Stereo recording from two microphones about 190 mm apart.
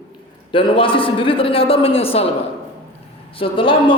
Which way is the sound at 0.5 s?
25° left (ahead or behind).